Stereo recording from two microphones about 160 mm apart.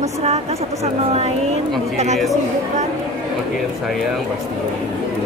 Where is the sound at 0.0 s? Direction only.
40° right (ahead or behind).